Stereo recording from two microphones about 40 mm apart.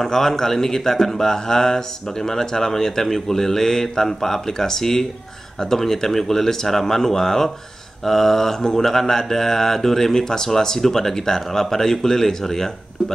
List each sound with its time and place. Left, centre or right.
0.0 s speech: centre